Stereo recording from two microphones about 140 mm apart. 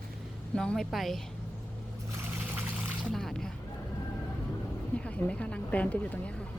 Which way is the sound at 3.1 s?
5° left (ahead or behind).